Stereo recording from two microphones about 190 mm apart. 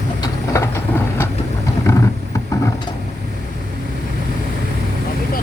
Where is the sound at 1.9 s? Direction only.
15° left (ahead or behind).